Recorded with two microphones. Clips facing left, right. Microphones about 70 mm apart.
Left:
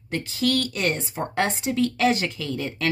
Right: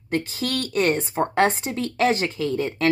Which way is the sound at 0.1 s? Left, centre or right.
Right.